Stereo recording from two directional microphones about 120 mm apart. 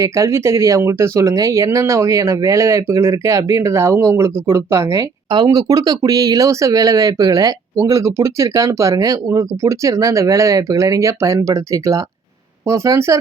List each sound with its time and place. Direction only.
0.0 s speech: 25° right (ahead or behind)